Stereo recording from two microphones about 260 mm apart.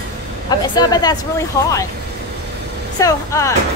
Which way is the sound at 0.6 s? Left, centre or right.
Centre.